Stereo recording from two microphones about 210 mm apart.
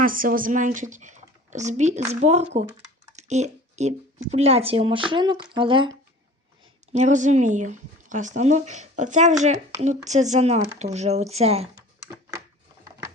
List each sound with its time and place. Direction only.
0.0 s speech: 40° right (ahead or behind); by 6.0 s 25° right (ahead or behind)
6.9 s speech: 35° right (ahead or behind)